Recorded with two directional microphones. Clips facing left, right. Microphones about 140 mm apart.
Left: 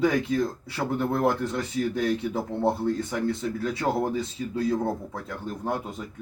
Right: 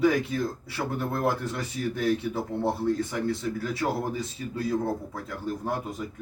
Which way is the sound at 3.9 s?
25° left (ahead or behind).